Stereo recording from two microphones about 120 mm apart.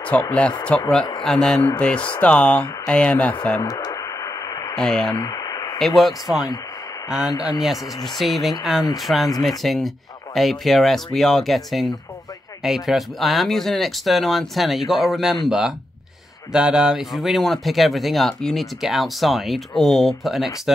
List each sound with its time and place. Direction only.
0.0 s speech: 10° left (ahead or behind)
3.6 s radio: 30° left (ahead or behind)
4.7 s speech: 5° left (ahead or behind)
5.2 s a sound: 30° left (ahead or behind)
5.8 s speech: centre (ahead or behind)